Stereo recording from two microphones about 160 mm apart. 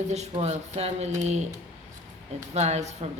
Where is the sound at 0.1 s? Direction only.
45° right (ahead or behind).